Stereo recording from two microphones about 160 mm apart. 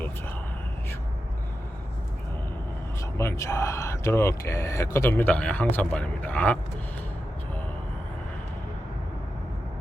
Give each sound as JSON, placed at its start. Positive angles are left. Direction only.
{"t": 3.2, "sound": "speech", "side_deg": 20}